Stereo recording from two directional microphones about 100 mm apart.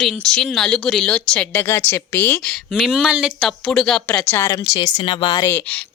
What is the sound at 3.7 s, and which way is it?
Speech, 5° left (ahead or behind).